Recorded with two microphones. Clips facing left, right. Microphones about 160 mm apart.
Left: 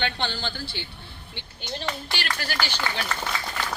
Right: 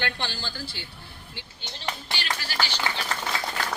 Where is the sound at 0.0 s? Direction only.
65° left (ahead or behind).